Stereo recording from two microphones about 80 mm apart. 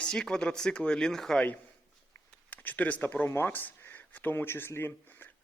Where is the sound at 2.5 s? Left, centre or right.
Left.